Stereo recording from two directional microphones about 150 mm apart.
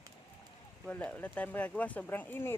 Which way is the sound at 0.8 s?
10° left (ahead or behind).